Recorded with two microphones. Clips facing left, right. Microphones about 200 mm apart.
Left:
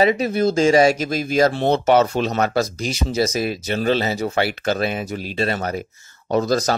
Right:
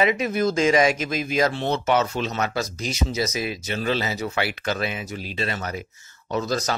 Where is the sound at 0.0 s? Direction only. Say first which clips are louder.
Left 4 dB; 35° left (ahead or behind).